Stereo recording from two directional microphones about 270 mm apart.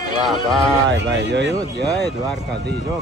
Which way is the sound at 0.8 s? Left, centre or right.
Right.